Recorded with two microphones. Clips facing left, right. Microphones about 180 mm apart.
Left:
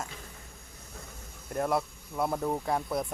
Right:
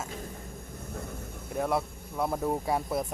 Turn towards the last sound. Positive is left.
turn(degrees=-5)  # may be behind; listen again after turning